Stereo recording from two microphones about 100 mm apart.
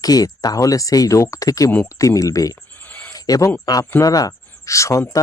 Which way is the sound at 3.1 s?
40° left (ahead or behind).